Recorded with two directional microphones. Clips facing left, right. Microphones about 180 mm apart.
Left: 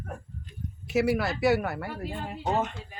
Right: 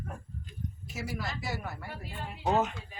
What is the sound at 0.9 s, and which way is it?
Speech, 70° left (ahead or behind).